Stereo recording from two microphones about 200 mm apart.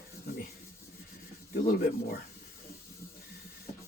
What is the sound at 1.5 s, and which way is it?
Speech, 45° left (ahead or behind).